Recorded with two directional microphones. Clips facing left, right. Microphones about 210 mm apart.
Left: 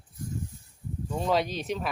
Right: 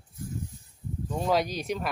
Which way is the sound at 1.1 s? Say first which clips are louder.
Even; 5° right (ahead or behind).